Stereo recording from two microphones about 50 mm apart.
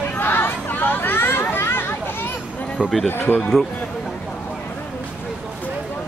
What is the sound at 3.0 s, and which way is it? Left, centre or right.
Speech, left.